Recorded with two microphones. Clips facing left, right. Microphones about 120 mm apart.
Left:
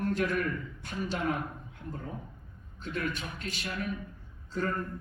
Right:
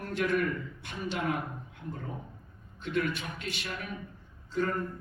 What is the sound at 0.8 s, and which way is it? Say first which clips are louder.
Speech: left 1 dB; 40° left (ahead or behind).